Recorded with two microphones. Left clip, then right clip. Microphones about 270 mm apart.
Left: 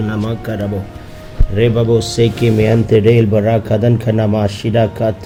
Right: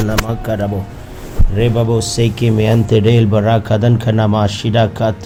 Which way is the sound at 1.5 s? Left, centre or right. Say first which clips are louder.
Left 3 dB; centre.